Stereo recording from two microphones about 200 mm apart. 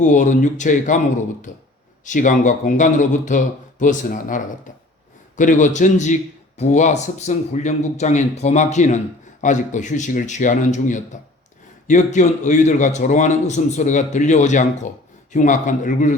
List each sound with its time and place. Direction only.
0.0 s a man's voice: 40° left (ahead or behind)